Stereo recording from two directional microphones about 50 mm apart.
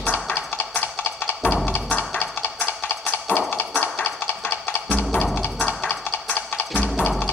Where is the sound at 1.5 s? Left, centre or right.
Left.